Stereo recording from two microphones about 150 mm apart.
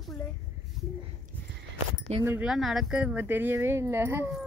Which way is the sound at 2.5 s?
Centre (ahead or behind).